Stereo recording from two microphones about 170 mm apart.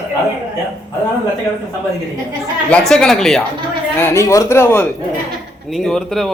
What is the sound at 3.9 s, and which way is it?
Speech, 15° left (ahead or behind).